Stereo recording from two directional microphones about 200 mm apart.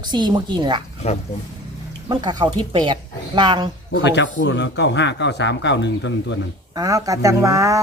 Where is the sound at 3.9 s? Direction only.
60° left (ahead or behind).